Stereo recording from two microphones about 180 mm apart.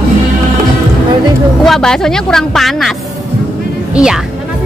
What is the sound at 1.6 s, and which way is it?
A woman's voice, centre (ahead or behind).